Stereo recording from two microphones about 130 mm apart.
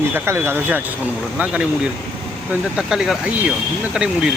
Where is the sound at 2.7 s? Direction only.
5° right (ahead or behind).